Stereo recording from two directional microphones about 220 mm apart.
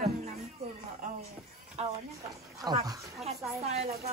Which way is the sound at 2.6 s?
15° right (ahead or behind).